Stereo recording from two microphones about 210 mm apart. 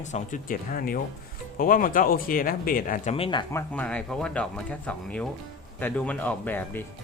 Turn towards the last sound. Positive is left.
turn(degrees=10)  # may be behind; listen again after turning